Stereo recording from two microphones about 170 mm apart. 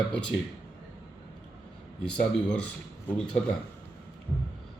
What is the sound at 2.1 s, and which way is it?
Speech, 5° left (ahead or behind).